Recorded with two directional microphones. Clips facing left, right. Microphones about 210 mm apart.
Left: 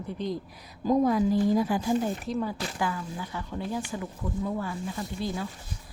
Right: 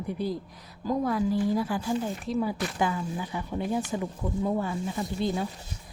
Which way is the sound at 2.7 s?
20° right (ahead or behind).